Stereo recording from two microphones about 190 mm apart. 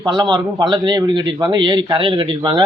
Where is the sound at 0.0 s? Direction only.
20° right (ahead or behind).